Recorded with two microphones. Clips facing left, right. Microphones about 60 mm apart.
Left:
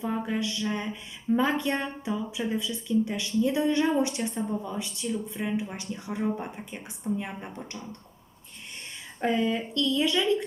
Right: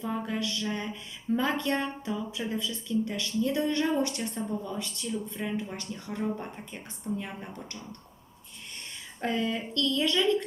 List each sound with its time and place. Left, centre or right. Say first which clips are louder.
0.0 s speech: left 2 dB; centre
9.2 s speech: left 4 dB; centre